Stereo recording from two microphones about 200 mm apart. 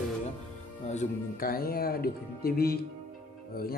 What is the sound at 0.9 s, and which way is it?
Speech, 40° left (ahead or behind).